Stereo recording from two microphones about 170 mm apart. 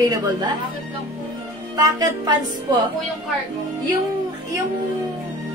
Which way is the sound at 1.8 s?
25° right (ahead or behind).